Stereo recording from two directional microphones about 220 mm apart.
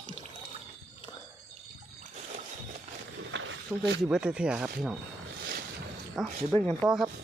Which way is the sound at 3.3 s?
55° right (ahead or behind).